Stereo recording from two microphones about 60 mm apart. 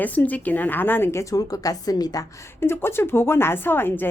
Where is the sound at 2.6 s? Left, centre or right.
Left.